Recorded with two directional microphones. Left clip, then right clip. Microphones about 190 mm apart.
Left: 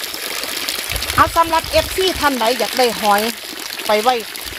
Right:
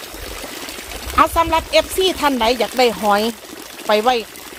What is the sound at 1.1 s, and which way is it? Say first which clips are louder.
Speech: even; 5° left (ahead or behind).